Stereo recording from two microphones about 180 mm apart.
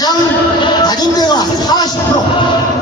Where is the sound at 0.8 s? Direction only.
20° left (ahead or behind).